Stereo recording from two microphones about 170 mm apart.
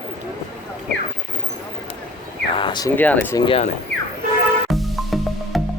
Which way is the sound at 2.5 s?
30° left (ahead or behind).